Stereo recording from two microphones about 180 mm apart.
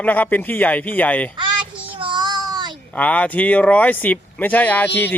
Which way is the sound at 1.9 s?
30° right (ahead or behind).